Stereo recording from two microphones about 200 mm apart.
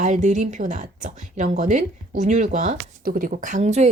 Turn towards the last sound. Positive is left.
turn(degrees=-35)  # may be behind; listen again after turning